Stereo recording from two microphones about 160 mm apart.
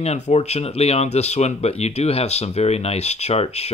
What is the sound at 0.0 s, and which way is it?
Speech, 40° left (ahead or behind).